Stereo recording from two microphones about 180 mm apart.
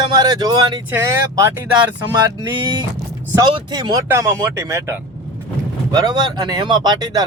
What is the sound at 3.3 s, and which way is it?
Speech, 25° right (ahead or behind).